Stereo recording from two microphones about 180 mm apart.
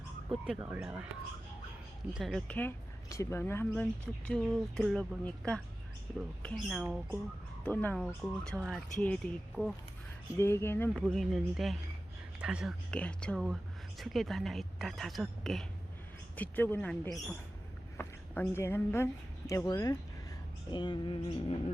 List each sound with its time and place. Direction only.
0.3 s speech: 5° right (ahead or behind)
2.1 s speech: centre (ahead or behind)
7.6 s speech: 10° left (ahead or behind)
10.3 s speech: 15° left (ahead or behind); by 12.7 s 5° right (ahead or behind)
12.9 s a woman's voice: 5° left (ahead or behind)
20.7 s a sound: 25° left (ahead or behind)